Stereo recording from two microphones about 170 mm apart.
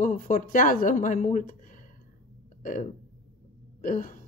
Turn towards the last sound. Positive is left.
turn(degrees=55)  # may be behind; listen again after turning